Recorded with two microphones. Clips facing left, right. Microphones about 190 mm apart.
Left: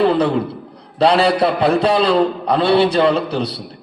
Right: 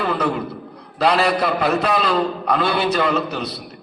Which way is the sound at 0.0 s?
30° left (ahead or behind).